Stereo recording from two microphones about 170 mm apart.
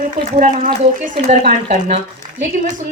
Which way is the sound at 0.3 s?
50° right (ahead or behind).